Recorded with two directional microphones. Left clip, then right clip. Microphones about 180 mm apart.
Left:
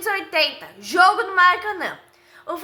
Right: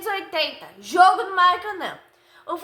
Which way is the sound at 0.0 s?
15° left (ahead or behind).